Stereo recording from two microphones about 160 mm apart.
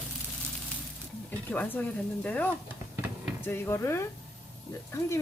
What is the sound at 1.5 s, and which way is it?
Speech, 10° left (ahead or behind).